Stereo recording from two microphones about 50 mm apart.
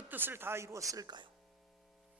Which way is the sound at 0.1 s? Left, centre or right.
Right.